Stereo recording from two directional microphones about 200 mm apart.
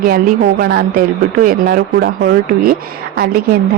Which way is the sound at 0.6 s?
50° right (ahead or behind).